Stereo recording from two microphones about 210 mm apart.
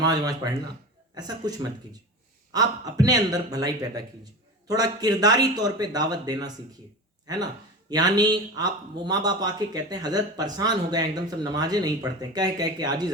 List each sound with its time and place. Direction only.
0.0 s a man's voice: 20° right (ahead or behind)
7.9 s speech: 20° right (ahead or behind)